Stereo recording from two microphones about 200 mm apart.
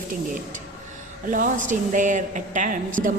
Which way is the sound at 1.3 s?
40° right (ahead or behind).